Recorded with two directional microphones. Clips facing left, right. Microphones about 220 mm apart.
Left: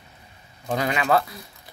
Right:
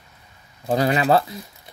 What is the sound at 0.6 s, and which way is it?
Speech, 35° right (ahead or behind).